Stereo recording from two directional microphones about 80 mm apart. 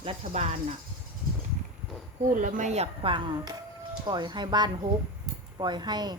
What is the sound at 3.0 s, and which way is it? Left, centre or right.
Speech, right.